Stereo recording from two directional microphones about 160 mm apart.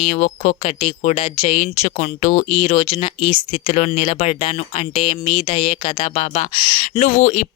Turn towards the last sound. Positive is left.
turn(degrees=50)  # may be behind; listen again after turning